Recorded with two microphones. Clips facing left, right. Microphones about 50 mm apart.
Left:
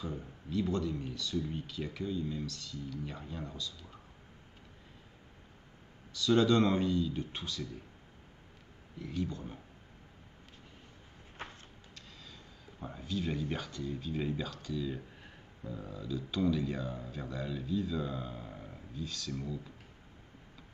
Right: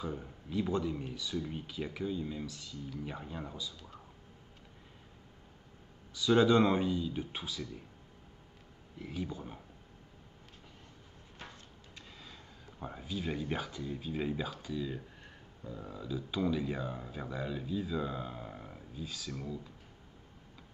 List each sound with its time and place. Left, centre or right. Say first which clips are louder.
0.0 s speech: right 1 dB; centre
6.1 s speech: right 1 dB; centre
9.0 s speech: left 2 dB; centre
11.4 s a sound: left 4 dB; left
11.9 s speech: right 2 dB; centre
15.1 s a sound: even; centre
15.8 s speech: even; centre